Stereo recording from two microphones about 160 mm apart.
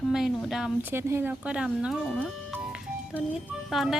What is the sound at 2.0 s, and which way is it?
Speech, 5° left (ahead or behind).